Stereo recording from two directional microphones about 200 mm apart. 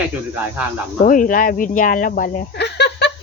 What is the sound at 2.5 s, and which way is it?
Speech, 55° left (ahead or behind).